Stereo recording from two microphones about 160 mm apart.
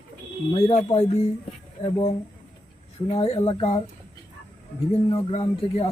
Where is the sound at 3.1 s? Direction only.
40° left (ahead or behind).